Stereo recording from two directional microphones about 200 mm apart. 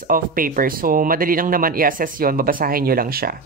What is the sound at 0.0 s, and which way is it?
Speech, 45° right (ahead or behind).